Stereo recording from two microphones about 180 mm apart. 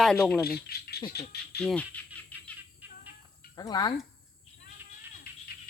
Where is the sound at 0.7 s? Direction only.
60° left (ahead or behind).